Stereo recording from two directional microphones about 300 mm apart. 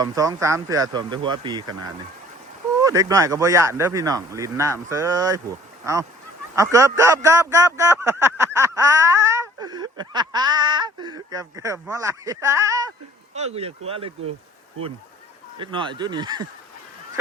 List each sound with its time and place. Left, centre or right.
0.0 s a man's voice: centre
2.8 s a man's voice: centre
15.5 s a man's voice: centre